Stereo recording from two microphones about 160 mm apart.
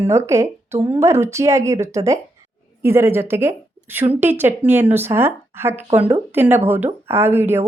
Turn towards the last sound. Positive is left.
turn(degrees=-15)  # may be behind; listen again after turning